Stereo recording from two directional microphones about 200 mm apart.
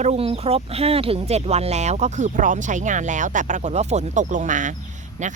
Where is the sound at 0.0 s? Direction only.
30° right (ahead or behind).